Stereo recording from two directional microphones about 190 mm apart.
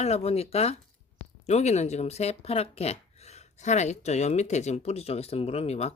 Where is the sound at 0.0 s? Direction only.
35° left (ahead or behind).